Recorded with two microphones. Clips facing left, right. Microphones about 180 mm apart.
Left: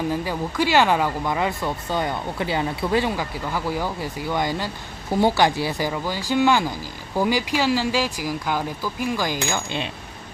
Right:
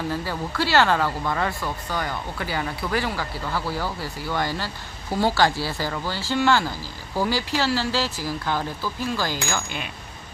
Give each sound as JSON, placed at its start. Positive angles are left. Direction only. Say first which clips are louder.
{"t": 0.1, "sound": "speech", "louder": "left 3 dB", "side_deg": 15}